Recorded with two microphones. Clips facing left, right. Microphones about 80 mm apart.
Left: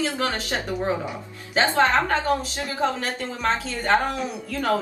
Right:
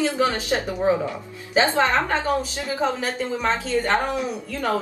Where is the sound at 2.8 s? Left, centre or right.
Centre.